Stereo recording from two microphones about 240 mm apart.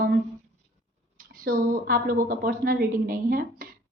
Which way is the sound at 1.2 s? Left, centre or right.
Right.